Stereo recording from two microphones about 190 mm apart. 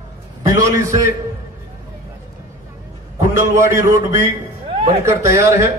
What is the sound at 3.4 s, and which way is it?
A man's voice, 15° right (ahead or behind).